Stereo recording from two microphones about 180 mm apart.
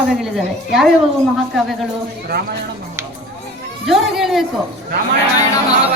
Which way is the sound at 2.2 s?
60° right (ahead or behind).